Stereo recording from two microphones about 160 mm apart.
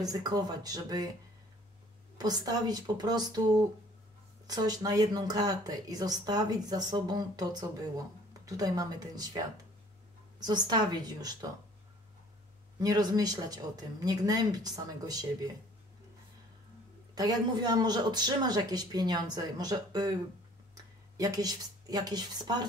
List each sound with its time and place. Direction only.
0.0 s speech: 25° right (ahead or behind)
2.1 s speech: 25° right (ahead or behind)
4.5 s speech: 25° right (ahead or behind)
10.4 s speech: 25° right (ahead or behind)
12.7 s speech: 25° right (ahead or behind)
17.1 s speech: 25° right (ahead or behind)